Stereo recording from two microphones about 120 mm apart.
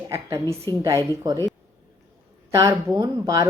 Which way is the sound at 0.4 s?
25° left (ahead or behind).